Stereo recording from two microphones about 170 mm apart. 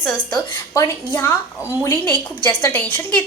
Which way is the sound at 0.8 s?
10° left (ahead or behind).